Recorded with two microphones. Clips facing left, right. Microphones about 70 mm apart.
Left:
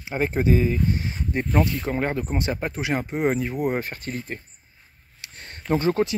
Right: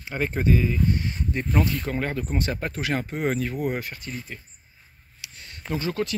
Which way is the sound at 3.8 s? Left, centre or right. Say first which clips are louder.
Left 4 dB; left.